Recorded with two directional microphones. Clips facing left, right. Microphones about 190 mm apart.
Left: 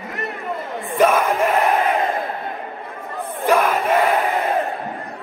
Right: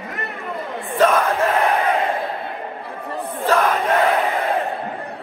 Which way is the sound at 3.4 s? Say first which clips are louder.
Left 1 dB; 10° left (ahead or behind).